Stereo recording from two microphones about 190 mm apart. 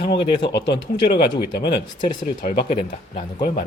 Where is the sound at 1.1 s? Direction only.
55° left (ahead or behind).